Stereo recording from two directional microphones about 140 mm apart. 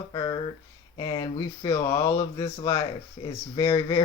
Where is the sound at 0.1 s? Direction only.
25° left (ahead or behind).